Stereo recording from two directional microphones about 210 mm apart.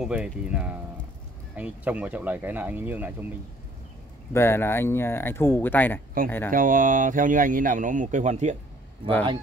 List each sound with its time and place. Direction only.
0.0 s speech: 5° right (ahead or behind)
4.3 s speech: 10° left (ahead or behind)
6.5 s speech: 40° right (ahead or behind)